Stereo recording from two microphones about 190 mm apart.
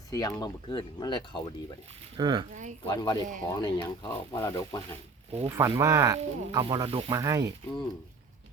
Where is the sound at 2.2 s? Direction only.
20° right (ahead or behind).